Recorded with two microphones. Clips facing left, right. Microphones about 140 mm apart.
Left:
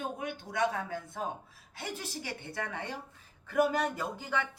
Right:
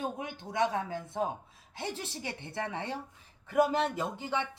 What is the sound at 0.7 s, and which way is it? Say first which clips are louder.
Speech: right 2 dB; 25° right (ahead or behind).